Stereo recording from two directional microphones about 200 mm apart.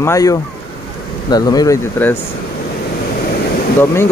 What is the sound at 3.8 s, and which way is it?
Speech, 10° left (ahead or behind).